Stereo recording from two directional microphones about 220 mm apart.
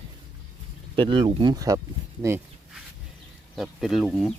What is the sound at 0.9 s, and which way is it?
Speech, 25° right (ahead or behind).